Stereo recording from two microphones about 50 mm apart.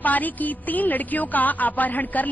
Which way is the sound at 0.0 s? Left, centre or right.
Left.